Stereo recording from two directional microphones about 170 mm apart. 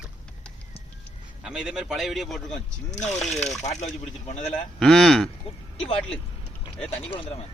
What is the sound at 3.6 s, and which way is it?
Speech, 40° left (ahead or behind).